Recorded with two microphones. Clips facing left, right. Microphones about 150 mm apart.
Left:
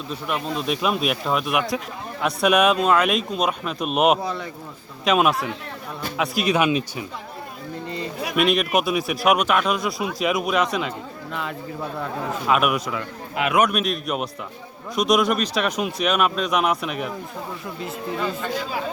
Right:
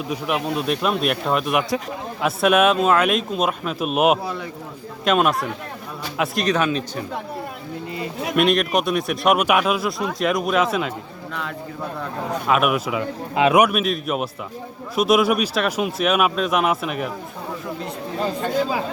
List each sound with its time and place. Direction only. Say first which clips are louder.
0.1 s speech: right 3 dB; 5° right (ahead or behind)
6.4 s a man's voice: left 2 dB; 10° left (ahead or behind)
7.9 s speech: right 2 dB; 5° right (ahead or behind)
12.5 s speech: right 1 dB; centre (ahead or behind)
13.3 s a man's voice: right 6 dB; 25° right (ahead or behind)
13.6 s speech: right 3 dB; 5° right (ahead or behind)